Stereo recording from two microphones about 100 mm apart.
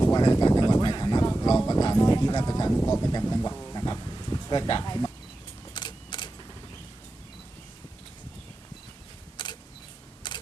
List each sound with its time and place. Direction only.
0.0 s a sound: 40° left (ahead or behind)
2.8 s speech: 40° left (ahead or behind)
3.8 s insect: 40° left (ahead or behind)
5.7 s camera: 50° left (ahead or behind)
9.4 s single-lens reflex camera: 50° left (ahead or behind)
10.3 s typewriter: 50° left (ahead or behind)